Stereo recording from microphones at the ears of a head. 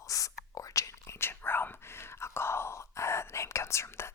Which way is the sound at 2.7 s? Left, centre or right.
Left.